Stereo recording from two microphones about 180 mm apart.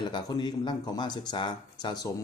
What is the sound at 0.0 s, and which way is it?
Speech, 25° left (ahead or behind).